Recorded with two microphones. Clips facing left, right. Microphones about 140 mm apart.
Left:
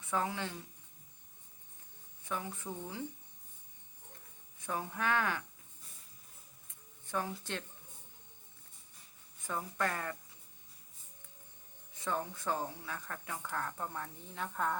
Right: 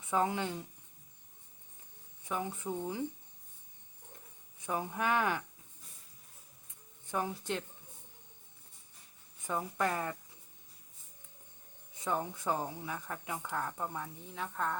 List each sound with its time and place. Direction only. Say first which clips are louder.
0.1 s speech: right 4 dB; 20° right (ahead or behind)
2.2 s speech: right 3 dB; 20° right (ahead or behind)
4.6 s speech: right 2 dB; 15° right (ahead or behind)
7.1 s speech: right 3 dB; 15° right (ahead or behind)
9.5 s speech: right 3 dB; 15° right (ahead or behind)
11.9 s speech: right 2 dB; 15° right (ahead or behind); by 14.8 s centre (ahead or behind)